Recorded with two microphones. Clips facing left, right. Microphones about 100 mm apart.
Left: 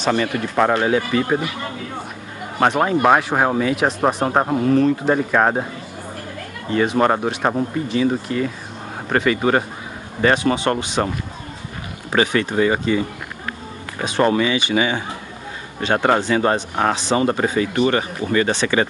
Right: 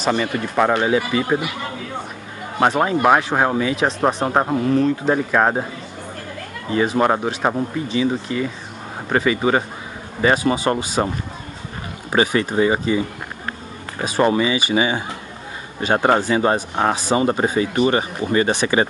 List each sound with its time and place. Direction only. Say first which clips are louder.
0.0 s speech: left 1 dB; 5° right (ahead or behind)
2.6 s speech: even; centre (ahead or behind)
6.7 s speech: even; 5° right (ahead or behind)
12.1 s speech: even; 10° right (ahead or behind)
14.0 s speech: even; 5° right (ahead or behind)